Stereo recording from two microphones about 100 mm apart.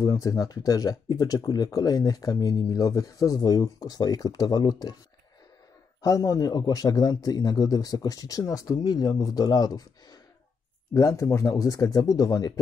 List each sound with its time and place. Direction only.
0.0 s speech: 35° left (ahead or behind)
6.0 s speech: 35° left (ahead or behind)
10.9 s speech: 30° left (ahead or behind)